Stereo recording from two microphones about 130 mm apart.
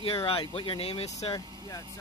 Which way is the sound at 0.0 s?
45° left (ahead or behind).